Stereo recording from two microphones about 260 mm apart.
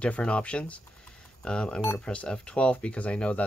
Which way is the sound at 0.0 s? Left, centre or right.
Centre.